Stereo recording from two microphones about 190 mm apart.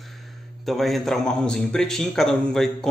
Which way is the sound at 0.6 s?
Centre (ahead or behind).